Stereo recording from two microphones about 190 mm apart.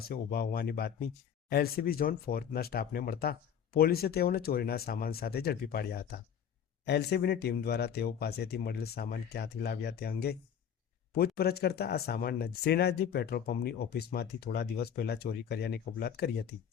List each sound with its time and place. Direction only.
0.1 s speech: 50° left (ahead or behind)
11.3 s speech: 55° left (ahead or behind)